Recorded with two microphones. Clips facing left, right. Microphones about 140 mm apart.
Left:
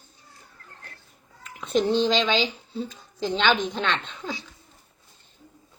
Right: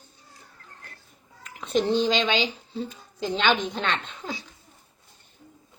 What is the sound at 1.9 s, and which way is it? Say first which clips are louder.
Speech: left 1 dB; 5° right (ahead or behind).